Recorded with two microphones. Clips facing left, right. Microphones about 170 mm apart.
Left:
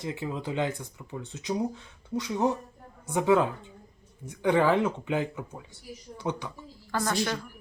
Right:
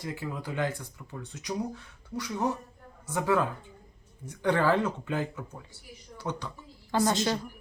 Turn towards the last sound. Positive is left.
turn(degrees=-20)  # may be behind; listen again after turning